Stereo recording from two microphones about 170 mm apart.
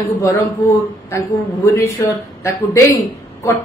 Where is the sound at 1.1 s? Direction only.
15° left (ahead or behind).